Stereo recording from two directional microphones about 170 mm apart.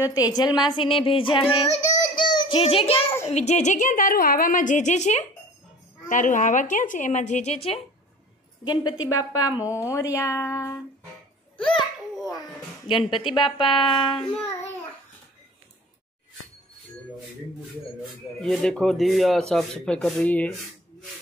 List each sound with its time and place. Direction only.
0.0 s a woman's voice: 20° left (ahead or behind)
1.9 s child singing: 25° left (ahead or behind)
3.3 s a woman's voice: 40° left (ahead or behind)
8.6 s a woman's voice: 25° left (ahead or behind)
12.8 s a woman's voice: 30° left (ahead or behind)
18.4 s speech: 5° left (ahead or behind)